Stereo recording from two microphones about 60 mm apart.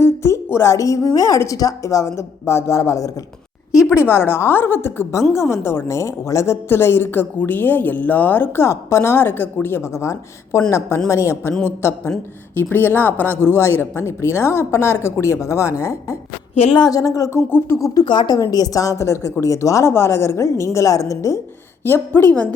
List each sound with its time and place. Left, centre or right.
0.0 s a woman's voice: left
1.5 s a woman's voice: left
3.7 s a woman's voice: left
8.6 s a woman's voice: left
9.8 s a woman's voice: left
11.6 s a woman's voice: left
16.9 s speech: left
17.8 s a woman's voice: left
21.8 s a woman's voice: left